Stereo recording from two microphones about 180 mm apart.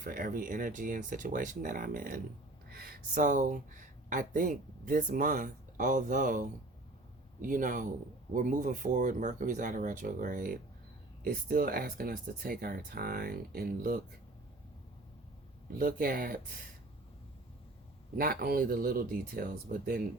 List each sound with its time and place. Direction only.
0.0 s speech: 50° right (ahead or behind)
15.8 s speech: 55° right (ahead or behind)
18.2 s speech: 55° right (ahead or behind)